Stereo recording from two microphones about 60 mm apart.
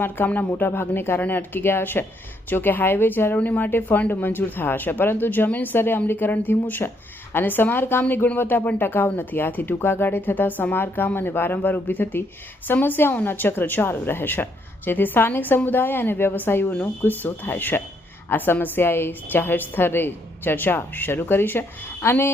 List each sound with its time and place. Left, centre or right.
0.3 s a woman's voice: left
3.3 s a woman's voice: left